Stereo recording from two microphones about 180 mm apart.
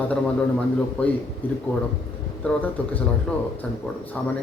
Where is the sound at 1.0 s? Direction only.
10° left (ahead or behind).